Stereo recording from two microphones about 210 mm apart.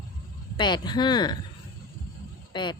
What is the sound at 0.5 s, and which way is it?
Speech, 20° left (ahead or behind).